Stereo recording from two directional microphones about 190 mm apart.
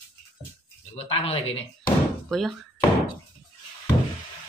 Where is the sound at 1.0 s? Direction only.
30° left (ahead or behind).